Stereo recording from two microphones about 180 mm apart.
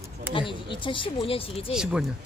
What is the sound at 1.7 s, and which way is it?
Speech, 5° right (ahead or behind).